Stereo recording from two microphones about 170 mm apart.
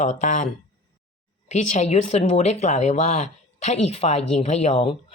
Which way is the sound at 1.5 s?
45° left (ahead or behind).